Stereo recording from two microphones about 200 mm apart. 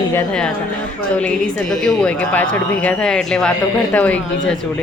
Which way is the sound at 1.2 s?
5° left (ahead or behind).